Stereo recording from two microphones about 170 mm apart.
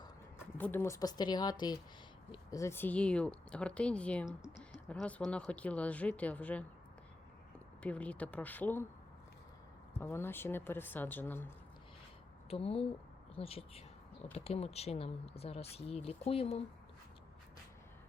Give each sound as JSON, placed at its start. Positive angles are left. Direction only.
{"t": 0.5, "sound": "a woman's voice", "side_deg": 10}
{"t": 7.8, "sound": "speech", "side_deg": 10}
{"t": 10.0, "sound": "speech", "side_deg": 15}
{"t": 12.5, "sound": "speech", "side_deg": 35}